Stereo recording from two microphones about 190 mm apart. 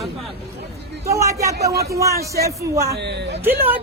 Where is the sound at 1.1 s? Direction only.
15° right (ahead or behind).